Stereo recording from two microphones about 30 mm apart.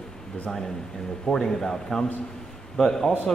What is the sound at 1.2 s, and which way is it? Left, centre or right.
A man's voice, centre.